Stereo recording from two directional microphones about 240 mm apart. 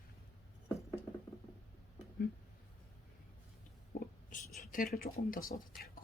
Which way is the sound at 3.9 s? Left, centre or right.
Left.